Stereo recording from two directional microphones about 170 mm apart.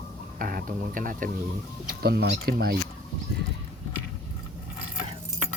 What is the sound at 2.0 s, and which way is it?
Speech, 65° right (ahead or behind).